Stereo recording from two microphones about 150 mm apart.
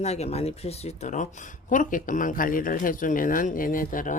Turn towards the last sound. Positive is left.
turn(degrees=65)  # may be behind; listen again after turning